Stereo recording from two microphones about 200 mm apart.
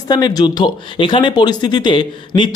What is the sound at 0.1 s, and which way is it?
Speech, 20° left (ahead or behind).